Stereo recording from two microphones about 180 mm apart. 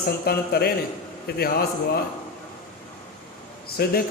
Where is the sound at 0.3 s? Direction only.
60° left (ahead or behind).